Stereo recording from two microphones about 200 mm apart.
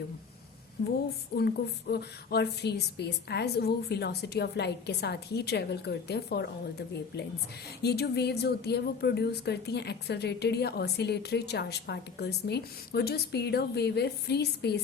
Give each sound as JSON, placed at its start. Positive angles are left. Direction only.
{"t": 1.4, "sound": "speech", "side_deg": 55}